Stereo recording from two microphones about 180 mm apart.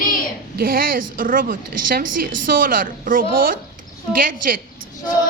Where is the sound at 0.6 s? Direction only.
55° right (ahead or behind).